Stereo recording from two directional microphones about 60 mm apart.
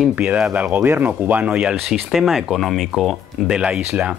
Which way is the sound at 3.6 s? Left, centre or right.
Centre.